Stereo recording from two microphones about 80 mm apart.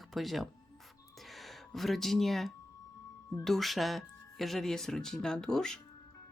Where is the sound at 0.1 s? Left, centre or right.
Centre.